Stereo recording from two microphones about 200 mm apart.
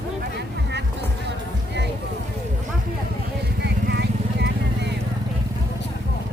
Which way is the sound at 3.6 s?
55° right (ahead or behind).